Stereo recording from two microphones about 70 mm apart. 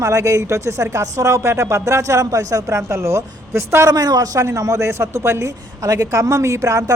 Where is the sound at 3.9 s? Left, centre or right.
Right.